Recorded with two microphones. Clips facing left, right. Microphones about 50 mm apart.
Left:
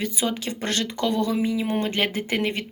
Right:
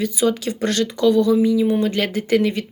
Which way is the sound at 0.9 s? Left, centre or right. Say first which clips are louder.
Right 10 dB; left.